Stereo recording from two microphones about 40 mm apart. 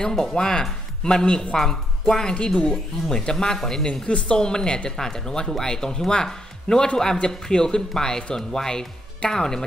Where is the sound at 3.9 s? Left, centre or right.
Left.